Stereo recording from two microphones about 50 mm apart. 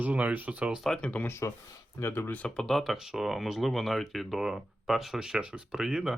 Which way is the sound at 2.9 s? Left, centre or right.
Centre.